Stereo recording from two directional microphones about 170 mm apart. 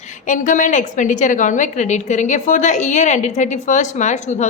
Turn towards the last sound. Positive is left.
turn(degrees=45)  # may be behind; listen again after turning